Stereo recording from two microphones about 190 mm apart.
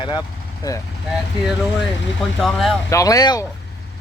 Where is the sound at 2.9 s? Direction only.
15° left (ahead or behind).